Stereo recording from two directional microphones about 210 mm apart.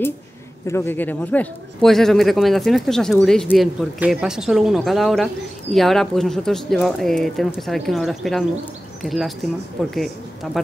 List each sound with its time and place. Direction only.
0.7 s a man's voice: 10° left (ahead or behind)